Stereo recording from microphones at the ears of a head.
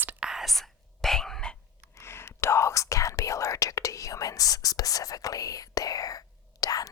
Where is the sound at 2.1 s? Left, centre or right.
Left.